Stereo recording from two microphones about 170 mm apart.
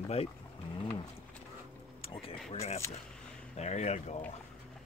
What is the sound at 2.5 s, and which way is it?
Speech, 40° left (ahead or behind).